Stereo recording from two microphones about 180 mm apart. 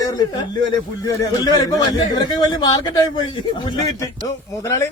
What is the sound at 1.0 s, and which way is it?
A man's voice, 20° left (ahead or behind).